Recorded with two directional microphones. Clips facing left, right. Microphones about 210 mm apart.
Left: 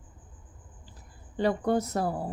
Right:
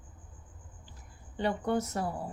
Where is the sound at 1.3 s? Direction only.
35° left (ahead or behind).